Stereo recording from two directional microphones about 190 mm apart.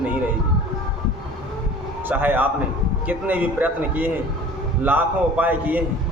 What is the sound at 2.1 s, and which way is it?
A man's voice, 10° right (ahead or behind).